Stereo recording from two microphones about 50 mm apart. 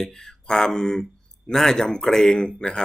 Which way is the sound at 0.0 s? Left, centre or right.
Centre.